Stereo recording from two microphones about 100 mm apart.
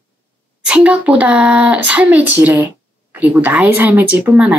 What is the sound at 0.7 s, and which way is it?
Speech, 10° right (ahead or behind).